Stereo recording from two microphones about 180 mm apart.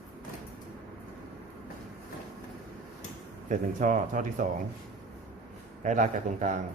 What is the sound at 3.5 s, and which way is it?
Speech, 45° right (ahead or behind).